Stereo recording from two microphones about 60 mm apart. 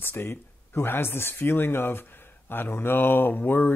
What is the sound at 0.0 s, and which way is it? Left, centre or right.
Speech, left.